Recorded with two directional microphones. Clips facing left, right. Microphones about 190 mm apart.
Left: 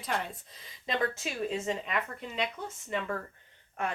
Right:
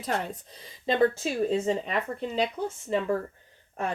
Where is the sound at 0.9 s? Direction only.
30° right (ahead or behind).